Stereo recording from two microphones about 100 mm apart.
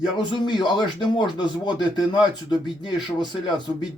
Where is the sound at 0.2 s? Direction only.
50° left (ahead or behind).